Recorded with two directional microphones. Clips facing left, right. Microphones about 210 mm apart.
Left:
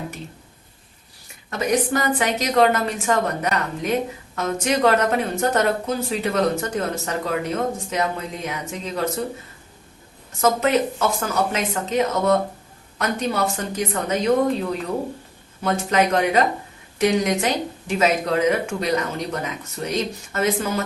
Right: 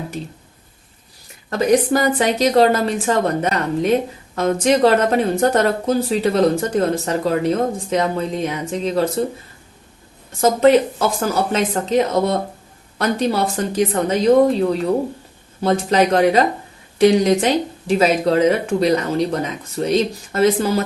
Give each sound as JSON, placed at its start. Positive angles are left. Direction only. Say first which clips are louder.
{"t": 1.5, "sound": "speech", "louder": "right 6 dB", "side_deg": -35}
{"t": 10.4, "sound": "speech", "louder": "right 6 dB", "side_deg": -30}